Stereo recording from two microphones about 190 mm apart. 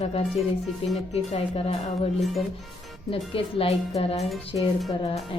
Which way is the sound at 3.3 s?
30° left (ahead or behind).